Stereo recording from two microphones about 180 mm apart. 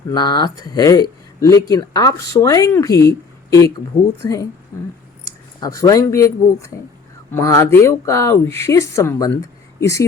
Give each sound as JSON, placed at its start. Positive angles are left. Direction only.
{"t": 0.1, "sound": "speech", "side_deg": 25}
{"t": 4.2, "sound": "speech", "side_deg": 20}